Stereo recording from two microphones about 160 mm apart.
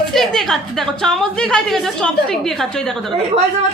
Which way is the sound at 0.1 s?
Centre (ahead or behind).